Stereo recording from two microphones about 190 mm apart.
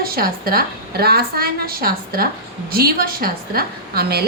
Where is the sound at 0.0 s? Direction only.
50° right (ahead or behind).